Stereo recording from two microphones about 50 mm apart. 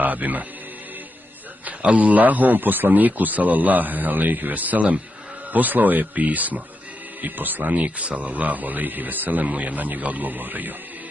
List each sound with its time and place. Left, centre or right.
0.0 s a man's voice: right
1.7 s speech: right